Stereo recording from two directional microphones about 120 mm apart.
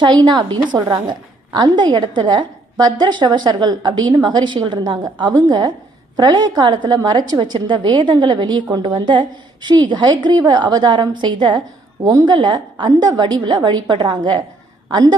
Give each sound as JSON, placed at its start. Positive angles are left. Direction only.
{"t": 0.0, "sound": "a woman's voice", "side_deg": -40}
{"t": 12.0, "sound": "a woman's voice", "side_deg": -25}
{"t": 12.3, "sound": "a woman's voice", "side_deg": -40}